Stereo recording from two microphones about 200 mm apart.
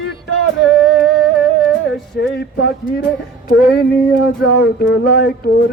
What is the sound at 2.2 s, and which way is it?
Music, 55° left (ahead or behind).